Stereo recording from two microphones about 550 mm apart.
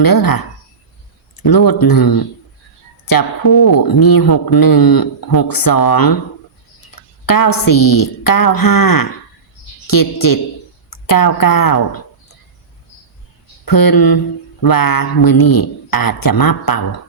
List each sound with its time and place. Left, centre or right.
0.0 s speech: left
7.3 s speech: left
13.7 s speech: left